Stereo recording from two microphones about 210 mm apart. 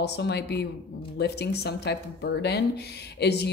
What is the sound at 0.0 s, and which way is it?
Speech, 50° left (ahead or behind).